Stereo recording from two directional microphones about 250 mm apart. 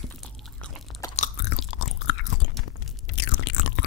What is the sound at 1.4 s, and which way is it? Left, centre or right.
Chewing, left.